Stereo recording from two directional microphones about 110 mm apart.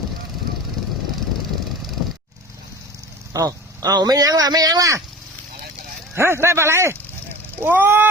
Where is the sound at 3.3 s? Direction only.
30° right (ahead or behind).